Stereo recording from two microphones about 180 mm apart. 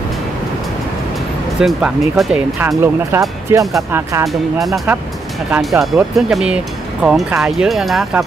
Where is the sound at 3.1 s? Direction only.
15° right (ahead or behind).